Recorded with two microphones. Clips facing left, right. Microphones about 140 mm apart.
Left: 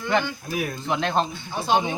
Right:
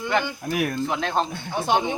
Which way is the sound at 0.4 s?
75° right (ahead or behind).